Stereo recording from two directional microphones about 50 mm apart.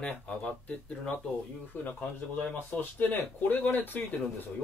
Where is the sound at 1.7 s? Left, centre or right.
Left.